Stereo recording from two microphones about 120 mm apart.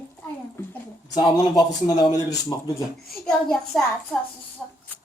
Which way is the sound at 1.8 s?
35° left (ahead or behind).